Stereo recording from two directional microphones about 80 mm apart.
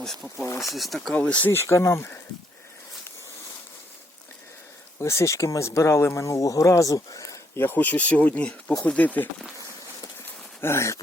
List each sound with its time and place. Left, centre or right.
0.0 s speech: centre
0.4 s speech: left
0.7 s speech: centre
1.1 s speech: centre
1.5 s speech: left
4.9 s speech: left
7.6 s speech: left
10.6 s speech: left